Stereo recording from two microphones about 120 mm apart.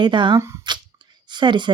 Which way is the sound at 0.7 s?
40° right (ahead or behind).